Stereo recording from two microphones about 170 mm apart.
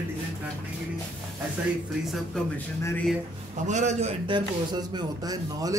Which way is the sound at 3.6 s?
45° right (ahead or behind).